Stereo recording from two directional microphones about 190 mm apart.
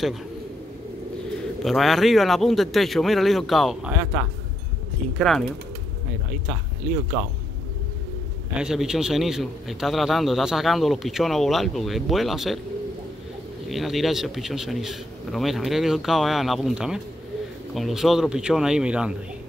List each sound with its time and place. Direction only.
1.6 s a man's voice: centre (ahead or behind)
6.5 s a man's voice: 5° right (ahead or behind)
8.5 s a man's voice: 5° right (ahead or behind)
13.7 s a man's voice: centre (ahead or behind)